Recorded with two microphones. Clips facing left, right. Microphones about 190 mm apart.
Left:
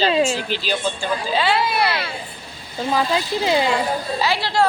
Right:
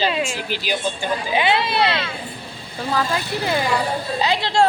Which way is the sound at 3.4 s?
20° left (ahead or behind).